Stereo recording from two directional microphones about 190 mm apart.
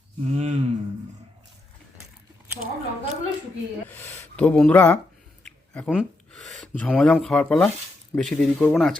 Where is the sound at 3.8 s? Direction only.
10° left (ahead or behind).